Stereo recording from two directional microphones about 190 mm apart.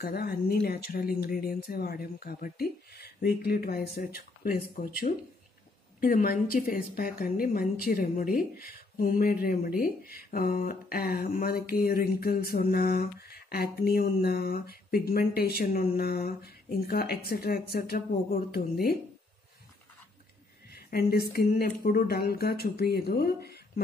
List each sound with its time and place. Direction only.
0.0 s speech: 55° left (ahead or behind)
20.9 s speech: 55° left (ahead or behind)